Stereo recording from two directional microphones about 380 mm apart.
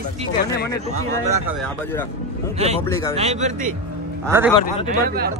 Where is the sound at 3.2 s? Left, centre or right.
Centre.